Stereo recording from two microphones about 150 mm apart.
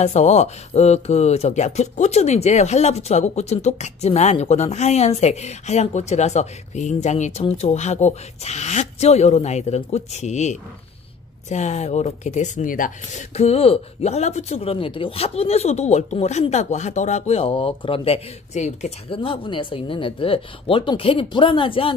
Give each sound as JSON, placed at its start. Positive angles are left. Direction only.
{"t": 0.0, "sound": "speech", "side_deg": 50}
{"t": 19.0, "sound": "speech", "side_deg": 35}